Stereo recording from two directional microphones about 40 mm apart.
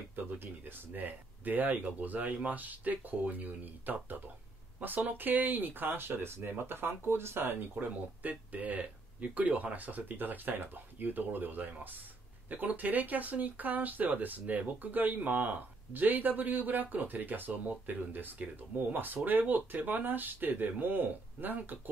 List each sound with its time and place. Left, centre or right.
0.1 s speech: right
7.8 s speech: right
8.2 s speech: right